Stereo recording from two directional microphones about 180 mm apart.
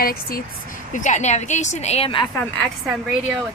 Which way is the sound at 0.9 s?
40° left (ahead or behind).